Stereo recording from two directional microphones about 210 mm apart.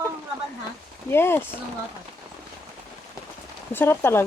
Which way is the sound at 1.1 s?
10° left (ahead or behind).